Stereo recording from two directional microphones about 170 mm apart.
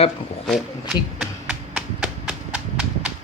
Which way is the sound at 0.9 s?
5° right (ahead or behind).